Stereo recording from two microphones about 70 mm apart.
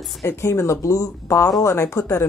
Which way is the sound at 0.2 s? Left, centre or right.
Left.